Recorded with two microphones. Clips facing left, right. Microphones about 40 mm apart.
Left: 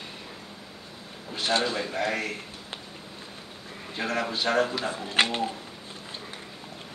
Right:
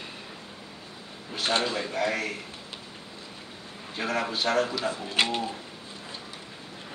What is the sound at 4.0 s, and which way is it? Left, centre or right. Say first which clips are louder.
Speech: even; centre.